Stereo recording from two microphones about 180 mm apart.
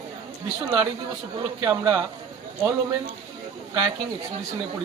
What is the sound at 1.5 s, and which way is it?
Speech, 20° right (ahead or behind).